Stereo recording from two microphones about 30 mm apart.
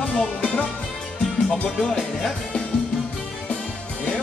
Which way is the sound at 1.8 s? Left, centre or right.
Centre.